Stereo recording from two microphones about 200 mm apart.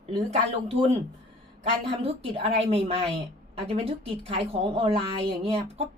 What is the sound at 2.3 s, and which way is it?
A woman's voice, 30° right (ahead or behind).